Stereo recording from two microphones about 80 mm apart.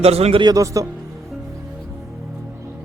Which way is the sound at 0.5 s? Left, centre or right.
Right.